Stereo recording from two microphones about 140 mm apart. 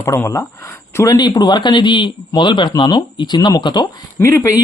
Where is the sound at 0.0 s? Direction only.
20° left (ahead or behind).